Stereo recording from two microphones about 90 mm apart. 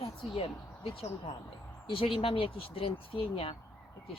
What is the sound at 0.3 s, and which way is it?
Speech, 90° left.